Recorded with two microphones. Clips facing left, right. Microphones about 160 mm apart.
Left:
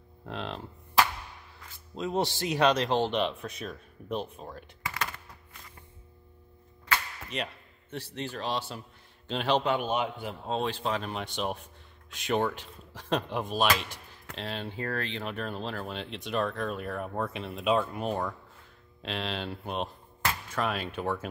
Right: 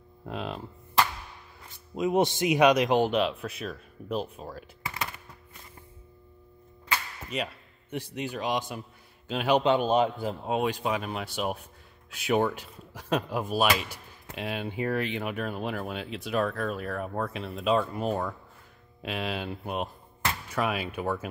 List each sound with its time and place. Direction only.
0.2 s speech: 10° right (ahead or behind)
2.0 s speech: 15° right (ahead or behind)
7.9 s speech: 15° right (ahead or behind)
9.6 s a man's voice: 25° right (ahead or behind)
10.4 s speech: 10° right (ahead or behind)